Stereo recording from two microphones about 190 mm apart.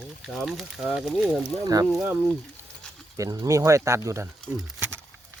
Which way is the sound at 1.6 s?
20° right (ahead or behind).